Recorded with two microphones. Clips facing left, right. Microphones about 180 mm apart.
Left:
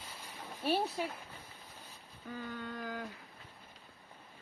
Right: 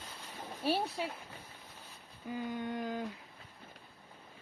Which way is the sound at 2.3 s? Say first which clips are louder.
Right 5 dB; 15° right (ahead or behind).